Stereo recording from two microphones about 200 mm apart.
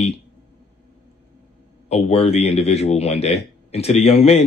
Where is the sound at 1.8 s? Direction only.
30° left (ahead or behind).